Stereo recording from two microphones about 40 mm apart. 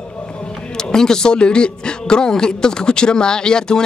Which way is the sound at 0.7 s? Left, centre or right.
Centre.